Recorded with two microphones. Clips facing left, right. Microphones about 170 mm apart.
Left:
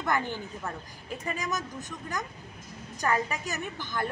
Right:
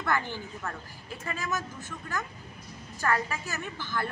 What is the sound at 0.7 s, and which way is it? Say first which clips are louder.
Speech: left 2 dB; 15° left (ahead or behind).